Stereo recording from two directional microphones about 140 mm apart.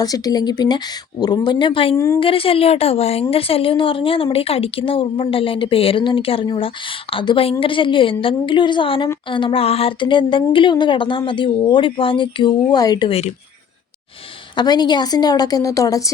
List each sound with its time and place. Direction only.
0.0 s a woman's voice: 25° left (ahead or behind)
13.1 s speech: 45° left (ahead or behind)
14.5 s a woman's voice: 30° left (ahead or behind)